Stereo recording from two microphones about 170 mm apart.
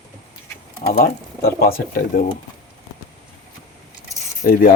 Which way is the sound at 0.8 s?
65° left (ahead or behind).